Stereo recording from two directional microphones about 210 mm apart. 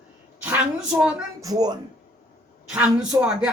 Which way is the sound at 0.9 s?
5° right (ahead or behind).